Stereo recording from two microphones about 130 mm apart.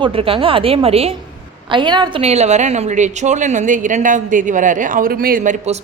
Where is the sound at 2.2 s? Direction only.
60° right (ahead or behind).